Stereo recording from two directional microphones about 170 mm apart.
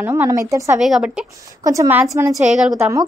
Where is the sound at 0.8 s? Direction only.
5° right (ahead or behind).